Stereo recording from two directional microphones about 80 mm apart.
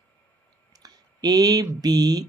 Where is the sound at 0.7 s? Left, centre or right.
Right.